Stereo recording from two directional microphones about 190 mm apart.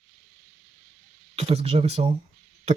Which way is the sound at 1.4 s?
35° right (ahead or behind).